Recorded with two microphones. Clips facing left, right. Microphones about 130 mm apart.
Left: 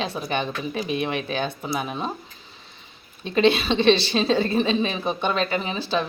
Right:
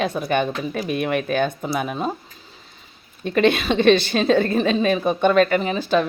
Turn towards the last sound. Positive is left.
turn(degrees=-50)  # may be behind; listen again after turning